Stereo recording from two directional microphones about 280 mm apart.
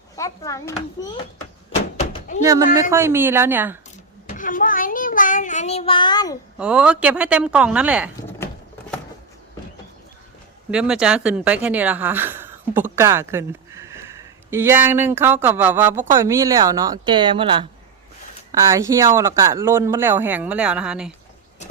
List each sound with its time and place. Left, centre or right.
0.2 s a child's voice: centre
2.1 s door: left
2.4 s speech: centre
4.3 s child singing: left
6.6 s speech: centre
10.7 s speech: centre